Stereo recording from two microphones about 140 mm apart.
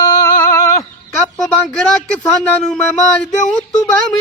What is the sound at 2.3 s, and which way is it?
Music, 10° left (ahead or behind).